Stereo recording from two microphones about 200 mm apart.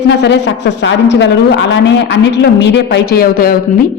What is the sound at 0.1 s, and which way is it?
A woman's voice, 60° left (ahead or behind).